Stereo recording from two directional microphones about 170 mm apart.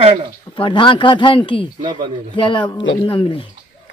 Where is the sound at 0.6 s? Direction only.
30° left (ahead or behind).